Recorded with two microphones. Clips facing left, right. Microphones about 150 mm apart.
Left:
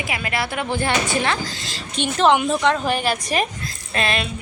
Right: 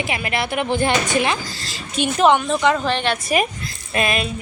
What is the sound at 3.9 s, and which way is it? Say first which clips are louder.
Speech: right 2 dB; 15° right (ahead or behind).